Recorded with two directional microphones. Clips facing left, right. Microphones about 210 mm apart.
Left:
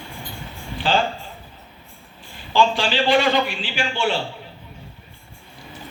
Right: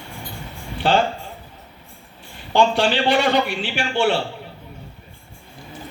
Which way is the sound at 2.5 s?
65° right (ahead or behind).